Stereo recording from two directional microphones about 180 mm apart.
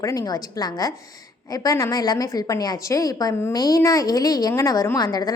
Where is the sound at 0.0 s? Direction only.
20° left (ahead or behind).